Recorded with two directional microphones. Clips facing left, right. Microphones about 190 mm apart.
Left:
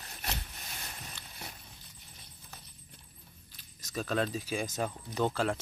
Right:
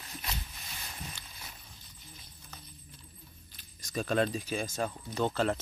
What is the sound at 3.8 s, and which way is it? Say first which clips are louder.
Speech: right 3 dB; centre (ahead or behind).